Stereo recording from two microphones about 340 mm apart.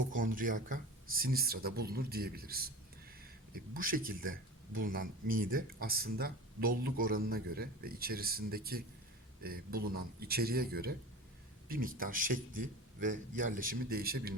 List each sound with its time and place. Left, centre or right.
0.1 s speech: right